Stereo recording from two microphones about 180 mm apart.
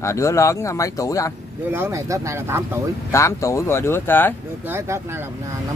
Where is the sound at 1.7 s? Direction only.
15° right (ahead or behind).